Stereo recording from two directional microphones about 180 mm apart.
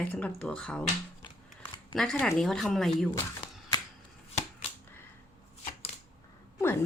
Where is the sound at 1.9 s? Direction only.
Centre (ahead or behind).